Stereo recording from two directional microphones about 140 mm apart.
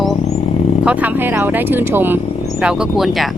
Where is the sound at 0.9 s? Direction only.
10° right (ahead or behind).